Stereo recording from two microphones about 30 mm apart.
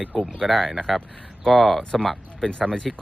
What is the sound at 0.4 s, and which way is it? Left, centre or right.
Speech, centre.